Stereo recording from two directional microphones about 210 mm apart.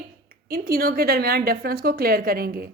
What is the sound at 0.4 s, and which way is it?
A woman's voice, 45° right (ahead or behind).